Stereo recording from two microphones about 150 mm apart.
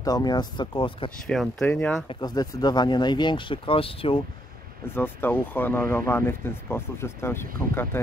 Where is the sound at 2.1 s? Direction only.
30° left (ahead or behind).